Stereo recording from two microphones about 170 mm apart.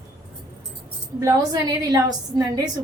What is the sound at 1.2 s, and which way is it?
A woman's voice, 20° right (ahead or behind).